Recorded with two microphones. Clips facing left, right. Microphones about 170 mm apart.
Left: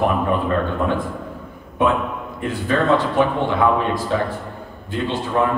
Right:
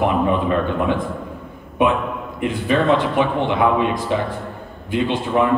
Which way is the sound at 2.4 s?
20° right (ahead or behind).